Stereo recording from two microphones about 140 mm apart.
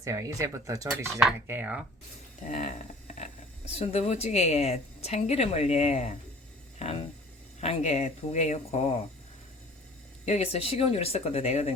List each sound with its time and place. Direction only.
0.0 s speech: 20° right (ahead or behind)
2.5 s a woman's voice: 55° left (ahead or behind)
3.8 s a woman's voice: 50° left (ahead or behind)
6.7 s a sound: 45° left (ahead or behind)
7.6 s a woman's voice: 45° left (ahead or behind)
10.2 s a woman's voice: 50° left (ahead or behind)